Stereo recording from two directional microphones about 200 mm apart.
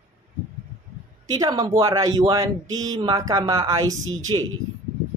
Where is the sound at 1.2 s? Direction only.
20° right (ahead or behind).